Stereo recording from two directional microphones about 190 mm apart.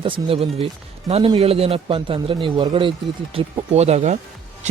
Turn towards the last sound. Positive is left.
turn(degrees=-35)  # may be behind; listen again after turning